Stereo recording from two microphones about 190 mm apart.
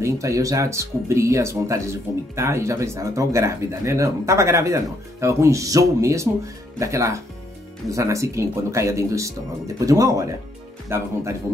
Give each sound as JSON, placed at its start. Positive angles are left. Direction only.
{"t": 0.0, "sound": "speech", "side_deg": -15}